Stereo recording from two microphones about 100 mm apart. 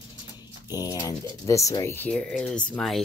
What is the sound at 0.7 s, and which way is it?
Speech, 35° left (ahead or behind).